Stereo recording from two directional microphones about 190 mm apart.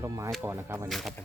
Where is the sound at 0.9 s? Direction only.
Centre (ahead or behind).